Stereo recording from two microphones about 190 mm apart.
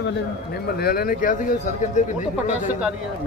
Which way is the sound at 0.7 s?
50° left (ahead or behind).